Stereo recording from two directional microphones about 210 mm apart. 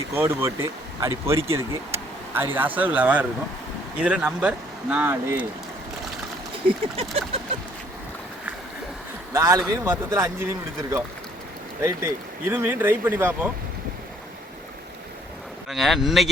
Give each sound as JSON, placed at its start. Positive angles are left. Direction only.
{"t": 0.1, "sound": "speech", "side_deg": -10}
{"t": 6.7, "sound": "a sound", "side_deg": -25}
{"t": 9.3, "sound": "speech", "side_deg": -15}
{"t": 11.8, "sound": "speech", "side_deg": -15}
{"t": 15.7, "sound": "speech", "side_deg": 0}